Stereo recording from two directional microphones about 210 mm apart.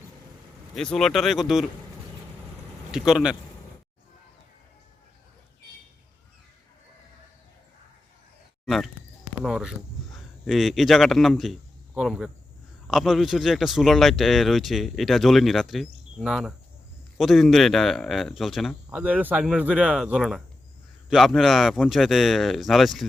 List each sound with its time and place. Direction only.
0.8 s speech: centre (ahead or behind)
2.9 s speech: 5° right (ahead or behind)
8.6 s a sound: centre (ahead or behind)
9.4 s speech: centre (ahead or behind)